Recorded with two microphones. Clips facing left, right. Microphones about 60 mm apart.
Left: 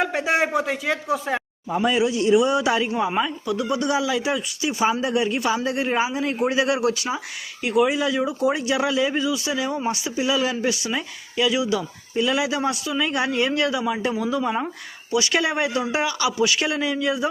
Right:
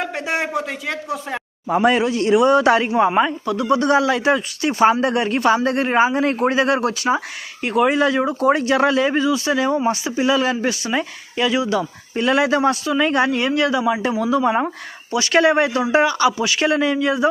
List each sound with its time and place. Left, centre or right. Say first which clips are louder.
0.0 s speech: left 2 dB; centre
1.6 s speech: right 7 dB; right
2.0 s speech: right 2 dB; right
3.2 s speech: right 5 dB; right